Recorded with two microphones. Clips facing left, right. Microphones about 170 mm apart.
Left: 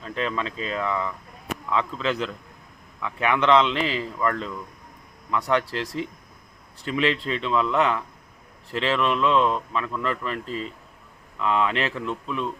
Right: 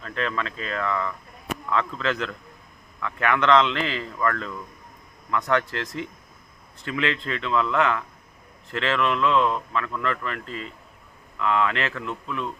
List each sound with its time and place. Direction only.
0.0 s speech: 15° left (ahead or behind)